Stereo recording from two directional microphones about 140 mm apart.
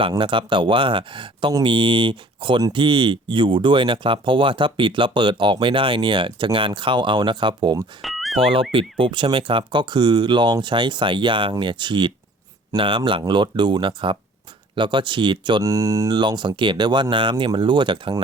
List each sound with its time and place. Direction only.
0.1 s speech: 35° right (ahead or behind)
8.0 s a sound: centre (ahead or behind)
8.4 s speech: 40° right (ahead or behind)